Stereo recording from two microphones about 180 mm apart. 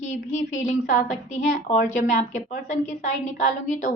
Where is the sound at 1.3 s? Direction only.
40° left (ahead or behind).